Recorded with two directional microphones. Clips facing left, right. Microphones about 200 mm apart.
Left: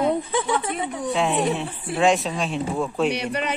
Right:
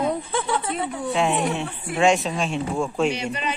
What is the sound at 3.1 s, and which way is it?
Speech, 65° left (ahead or behind).